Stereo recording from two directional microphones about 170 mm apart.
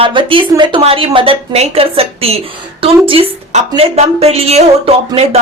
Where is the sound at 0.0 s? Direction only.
30° right (ahead or behind).